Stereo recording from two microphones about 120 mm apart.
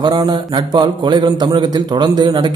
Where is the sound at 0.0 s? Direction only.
30° right (ahead or behind).